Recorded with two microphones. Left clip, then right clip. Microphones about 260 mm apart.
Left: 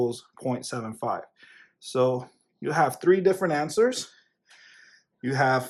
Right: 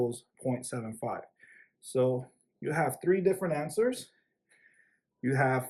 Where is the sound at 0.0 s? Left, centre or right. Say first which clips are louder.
Left 4 dB; centre.